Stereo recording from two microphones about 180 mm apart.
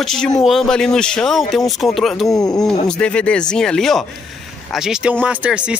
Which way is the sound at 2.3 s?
20° left (ahead or behind).